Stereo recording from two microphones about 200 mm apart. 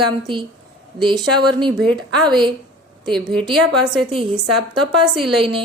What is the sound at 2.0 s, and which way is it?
Speech, 20° right (ahead or behind).